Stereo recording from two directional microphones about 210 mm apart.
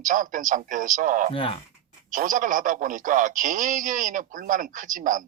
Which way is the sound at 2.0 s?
40° right (ahead or behind).